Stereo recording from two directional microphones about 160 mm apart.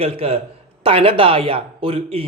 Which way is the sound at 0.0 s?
35° right (ahead or behind).